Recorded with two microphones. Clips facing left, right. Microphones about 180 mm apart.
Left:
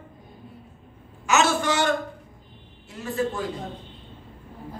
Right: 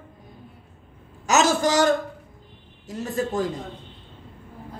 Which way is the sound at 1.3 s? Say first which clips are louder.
Right 2 dB; 40° right (ahead or behind).